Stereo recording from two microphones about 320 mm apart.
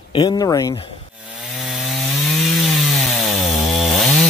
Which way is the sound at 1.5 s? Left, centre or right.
Centre.